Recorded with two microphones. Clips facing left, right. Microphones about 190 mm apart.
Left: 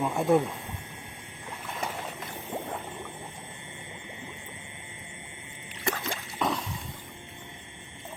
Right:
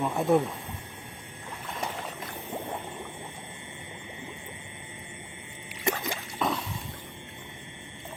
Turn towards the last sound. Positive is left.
turn(degrees=0)  # may be behind; listen again after turning